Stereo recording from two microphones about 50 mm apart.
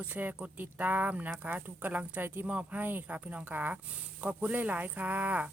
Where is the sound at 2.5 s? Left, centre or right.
Right.